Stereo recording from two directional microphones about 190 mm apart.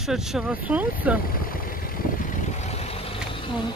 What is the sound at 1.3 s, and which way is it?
Vehicle, 50° left (ahead or behind).